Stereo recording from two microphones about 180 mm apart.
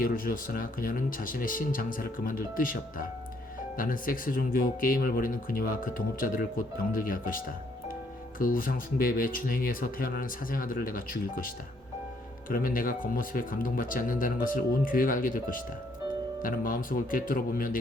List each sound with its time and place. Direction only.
0.0 s speech: 50° left (ahead or behind)